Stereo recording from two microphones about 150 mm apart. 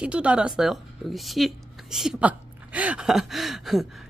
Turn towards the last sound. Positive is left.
turn(degrees=0)  # may be behind; listen again after turning